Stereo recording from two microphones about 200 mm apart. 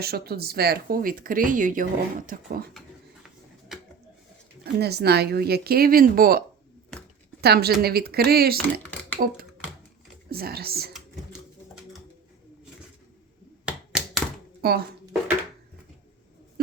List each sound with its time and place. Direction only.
0.0 s speech: 50° right (ahead or behind)
4.6 s speech: 55° right (ahead or behind)
7.4 s speech: 50° right (ahead or behind)
13.7 s a sound: centre (ahead or behind)
14.6 s speech: 50° right (ahead or behind)